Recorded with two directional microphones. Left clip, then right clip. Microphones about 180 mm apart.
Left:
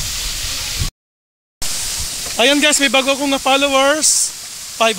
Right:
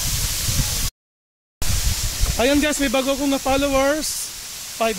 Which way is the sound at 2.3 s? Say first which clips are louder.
Left 6 dB; 5° left (ahead or behind).